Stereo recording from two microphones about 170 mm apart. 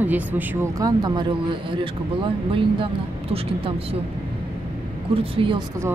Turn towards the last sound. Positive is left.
turn(degrees=-30)  # may be behind; listen again after turning